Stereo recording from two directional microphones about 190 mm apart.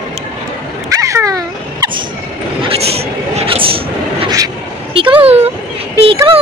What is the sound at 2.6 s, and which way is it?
Vehicle, 30° right (ahead or behind).